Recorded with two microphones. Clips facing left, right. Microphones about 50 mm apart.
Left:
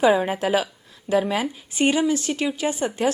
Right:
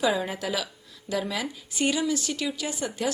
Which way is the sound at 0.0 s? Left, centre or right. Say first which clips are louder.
Left 7 dB; left.